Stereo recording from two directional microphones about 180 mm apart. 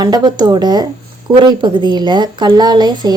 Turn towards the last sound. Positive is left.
turn(degrees=-25)  # may be behind; listen again after turning